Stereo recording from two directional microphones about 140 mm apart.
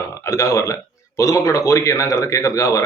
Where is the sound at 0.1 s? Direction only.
20° left (ahead or behind).